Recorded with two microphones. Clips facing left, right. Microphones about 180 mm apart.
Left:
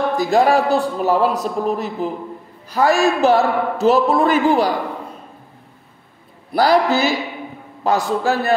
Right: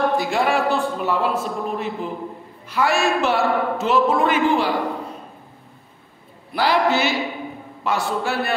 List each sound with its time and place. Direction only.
0.2 s a man's voice: 40° left (ahead or behind)
6.5 s a man's voice: 40° left (ahead or behind)